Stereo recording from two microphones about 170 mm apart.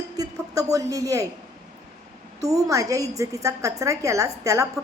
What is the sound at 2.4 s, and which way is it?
A woman's voice, 20° right (ahead or behind).